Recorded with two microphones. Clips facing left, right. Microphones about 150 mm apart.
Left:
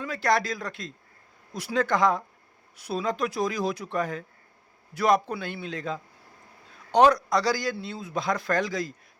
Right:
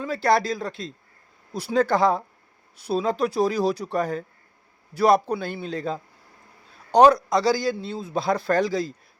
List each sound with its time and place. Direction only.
0.0 s a man's voice: 30° right (ahead or behind)
7.2 s a man's voice: 25° right (ahead or behind)